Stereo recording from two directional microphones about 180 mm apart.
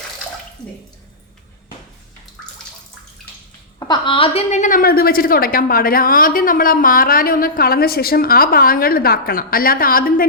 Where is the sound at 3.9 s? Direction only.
30° left (ahead or behind).